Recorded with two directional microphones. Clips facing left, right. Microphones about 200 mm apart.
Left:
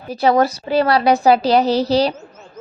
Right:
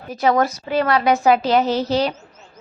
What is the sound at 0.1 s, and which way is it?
A woman's voice, 35° left (ahead or behind).